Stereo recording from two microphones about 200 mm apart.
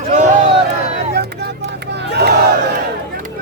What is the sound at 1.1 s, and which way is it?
Music, 55° right (ahead or behind).